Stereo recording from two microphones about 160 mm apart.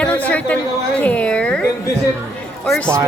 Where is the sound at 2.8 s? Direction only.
20° right (ahead or behind).